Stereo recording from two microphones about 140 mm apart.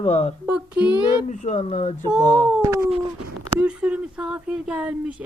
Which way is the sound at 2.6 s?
20° right (ahead or behind).